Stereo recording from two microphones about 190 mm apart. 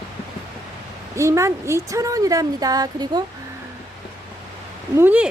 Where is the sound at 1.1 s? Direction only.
15° right (ahead or behind).